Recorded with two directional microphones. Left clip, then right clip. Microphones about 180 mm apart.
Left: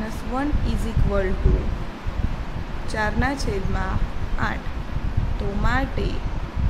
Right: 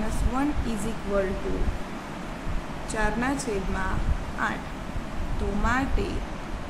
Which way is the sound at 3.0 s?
15° left (ahead or behind).